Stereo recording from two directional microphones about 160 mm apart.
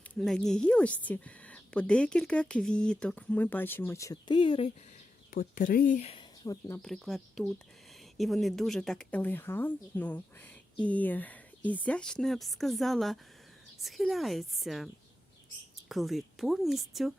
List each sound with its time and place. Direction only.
0.2 s speech: centre (ahead or behind); by 4.7 s 35° left (ahead or behind)
5.3 s speech: 60° left (ahead or behind)
6.4 s speech: 25° left (ahead or behind)
6.7 s speech: centre (ahead or behind)
15.9 s speech: centre (ahead or behind)